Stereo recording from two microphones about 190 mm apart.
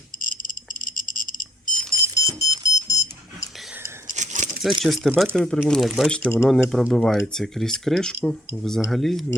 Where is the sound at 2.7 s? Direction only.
15° left (ahead or behind).